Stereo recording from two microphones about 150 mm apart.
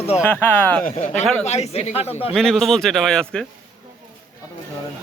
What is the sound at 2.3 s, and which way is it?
A man's voice, centre (ahead or behind).